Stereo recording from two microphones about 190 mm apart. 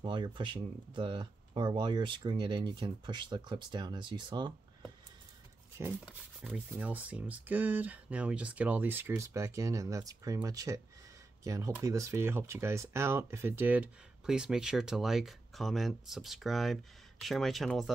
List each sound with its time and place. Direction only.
0.0 s speech: 25° right (ahead or behind)
6.4 s speech: 5° right (ahead or behind)